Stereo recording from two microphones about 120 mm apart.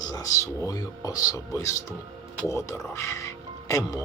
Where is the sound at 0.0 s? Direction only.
30° left (ahead or behind).